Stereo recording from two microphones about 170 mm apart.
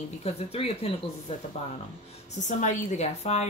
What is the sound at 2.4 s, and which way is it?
A woman's voice, 45° left (ahead or behind).